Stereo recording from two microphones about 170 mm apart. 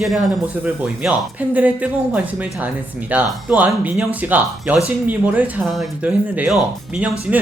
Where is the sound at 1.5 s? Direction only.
10° right (ahead or behind).